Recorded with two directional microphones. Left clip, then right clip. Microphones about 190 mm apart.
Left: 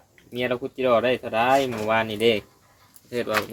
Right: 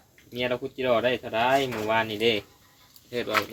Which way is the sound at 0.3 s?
50° left (ahead or behind).